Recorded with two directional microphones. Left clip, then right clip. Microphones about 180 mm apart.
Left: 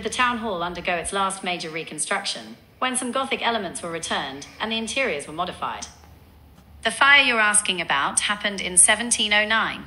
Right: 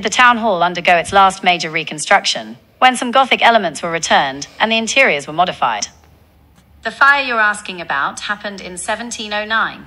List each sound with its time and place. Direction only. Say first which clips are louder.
0.0 s a woman's voice: right 12 dB; 20° right (ahead or behind)
6.8 s a woman's voice: right 4 dB; 10° left (ahead or behind)